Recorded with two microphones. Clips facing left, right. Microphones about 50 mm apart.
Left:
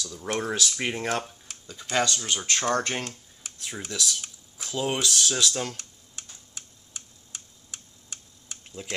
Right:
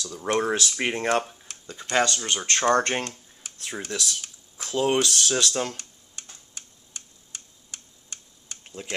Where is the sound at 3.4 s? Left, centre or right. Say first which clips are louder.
Even; centre.